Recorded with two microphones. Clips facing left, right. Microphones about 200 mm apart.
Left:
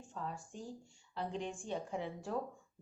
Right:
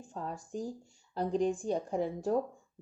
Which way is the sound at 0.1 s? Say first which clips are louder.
Right 6 dB; 40° right (ahead or behind).